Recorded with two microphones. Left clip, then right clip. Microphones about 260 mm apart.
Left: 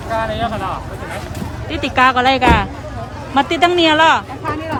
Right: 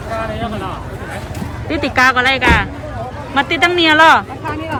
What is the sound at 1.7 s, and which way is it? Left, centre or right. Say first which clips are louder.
Speech: right 1 dB; centre.